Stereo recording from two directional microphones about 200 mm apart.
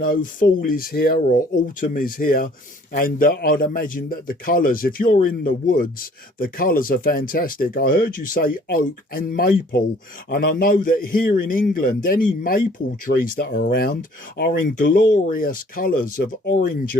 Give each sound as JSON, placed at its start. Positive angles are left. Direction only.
{"t": 0.0, "sound": "a man's voice", "side_deg": 45}